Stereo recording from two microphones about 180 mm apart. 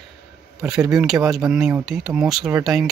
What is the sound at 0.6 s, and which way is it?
Speech, 5° right (ahead or behind).